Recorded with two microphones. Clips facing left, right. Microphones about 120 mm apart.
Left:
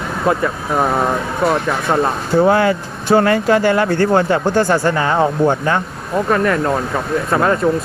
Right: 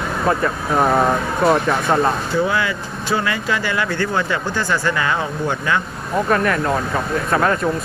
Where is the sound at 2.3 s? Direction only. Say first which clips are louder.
Left 7 dB; 50° left (ahead or behind).